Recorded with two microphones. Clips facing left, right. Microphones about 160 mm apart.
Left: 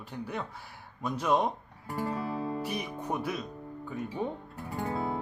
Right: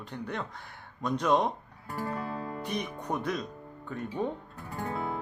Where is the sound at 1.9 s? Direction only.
15° left (ahead or behind).